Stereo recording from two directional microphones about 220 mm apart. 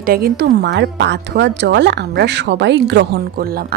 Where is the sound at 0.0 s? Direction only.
40° right (ahead or behind).